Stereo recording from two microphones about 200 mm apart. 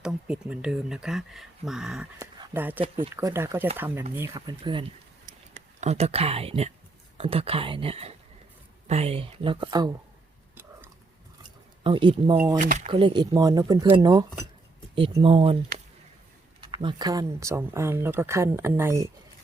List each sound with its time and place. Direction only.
0.0 s speech: 5° right (ahead or behind)
2.1 s speech: 15° right (ahead or behind)
2.8 s speech: 30° right (ahead or behind)
3.2 s speech: 15° right (ahead or behind)
4.4 s speech: 25° right (ahead or behind)
5.2 s a sound: 35° right (ahead or behind)
7.2 s speech: 30° right (ahead or behind)
10.5 s a sound: 10° right (ahead or behind)
11.8 s speech: 25° right (ahead or behind)
12.5 s speech: 40° right (ahead or behind)
12.9 s speech: 25° right (ahead or behind)
16.6 s speech: 25° right (ahead or behind)